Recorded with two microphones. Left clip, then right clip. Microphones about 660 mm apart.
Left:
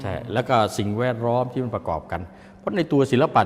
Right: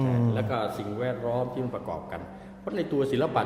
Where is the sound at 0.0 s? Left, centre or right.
Left.